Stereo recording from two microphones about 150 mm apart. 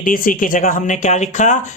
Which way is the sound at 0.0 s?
65° left (ahead or behind).